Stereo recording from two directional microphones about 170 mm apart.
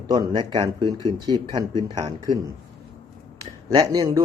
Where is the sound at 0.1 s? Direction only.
20° right (ahead or behind).